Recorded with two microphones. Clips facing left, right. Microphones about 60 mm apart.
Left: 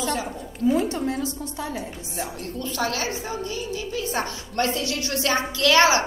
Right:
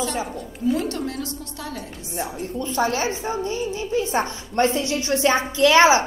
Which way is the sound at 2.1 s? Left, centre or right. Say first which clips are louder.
Right 4 dB; right.